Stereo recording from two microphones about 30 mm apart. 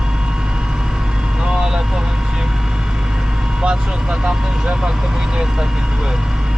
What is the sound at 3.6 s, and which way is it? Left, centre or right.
Vehicle, right.